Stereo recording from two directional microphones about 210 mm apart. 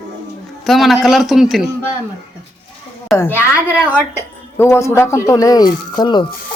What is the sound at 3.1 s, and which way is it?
Speech, 10° left (ahead or behind).